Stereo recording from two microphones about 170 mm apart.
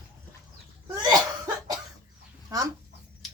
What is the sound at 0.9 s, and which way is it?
Cough, 20° right (ahead or behind).